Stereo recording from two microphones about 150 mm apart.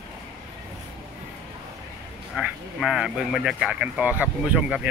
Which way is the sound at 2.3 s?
5° right (ahead or behind).